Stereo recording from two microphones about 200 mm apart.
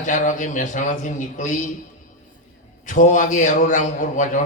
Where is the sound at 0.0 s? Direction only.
40° left (ahead or behind).